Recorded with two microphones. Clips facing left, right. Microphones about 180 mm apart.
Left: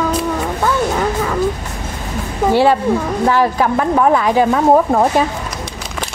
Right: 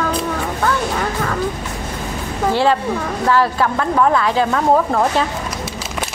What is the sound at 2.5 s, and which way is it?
Speech, 15° left (ahead or behind).